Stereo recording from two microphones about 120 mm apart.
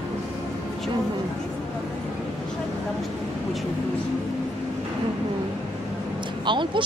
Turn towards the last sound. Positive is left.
turn(degrees=-40)  # may be behind; listen again after turning